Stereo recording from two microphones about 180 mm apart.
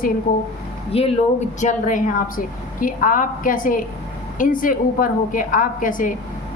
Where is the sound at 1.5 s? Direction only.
45° left (ahead or behind).